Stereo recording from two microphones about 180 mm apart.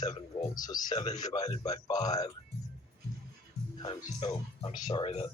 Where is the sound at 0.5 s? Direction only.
20° left (ahead or behind).